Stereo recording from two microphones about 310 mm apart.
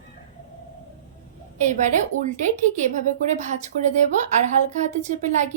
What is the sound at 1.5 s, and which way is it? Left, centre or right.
A woman's voice, right.